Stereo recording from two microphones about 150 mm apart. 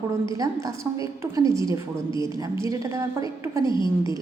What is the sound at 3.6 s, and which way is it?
Speech, 30° left (ahead or behind).